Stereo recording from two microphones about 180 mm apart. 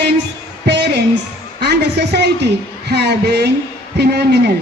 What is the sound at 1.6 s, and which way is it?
A woman's voice, 65° right (ahead or behind).